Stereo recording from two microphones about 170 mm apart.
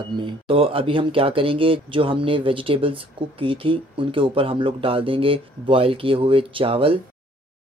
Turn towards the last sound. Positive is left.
turn(degrees=-30)  # may be behind; listen again after turning